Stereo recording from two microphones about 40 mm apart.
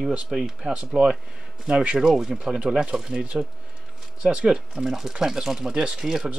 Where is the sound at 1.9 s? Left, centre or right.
Centre.